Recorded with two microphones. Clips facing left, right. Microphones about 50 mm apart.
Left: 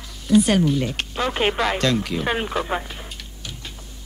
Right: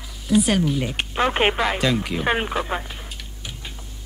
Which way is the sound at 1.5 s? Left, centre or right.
Centre.